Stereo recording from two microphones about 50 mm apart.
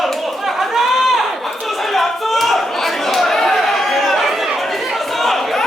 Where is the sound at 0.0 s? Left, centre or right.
Centre.